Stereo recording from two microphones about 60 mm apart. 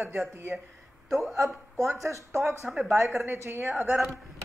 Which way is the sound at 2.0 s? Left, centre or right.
Right.